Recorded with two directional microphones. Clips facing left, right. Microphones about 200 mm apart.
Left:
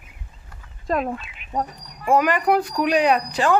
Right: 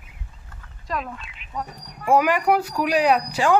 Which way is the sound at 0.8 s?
50° left (ahead or behind).